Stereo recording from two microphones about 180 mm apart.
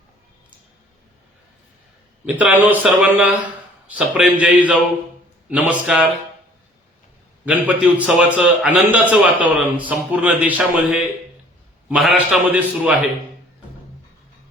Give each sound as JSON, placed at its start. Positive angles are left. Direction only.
{"t": 2.2, "sound": "a man's voice", "side_deg": -10}
{"t": 7.4, "sound": "a man's voice", "side_deg": -5}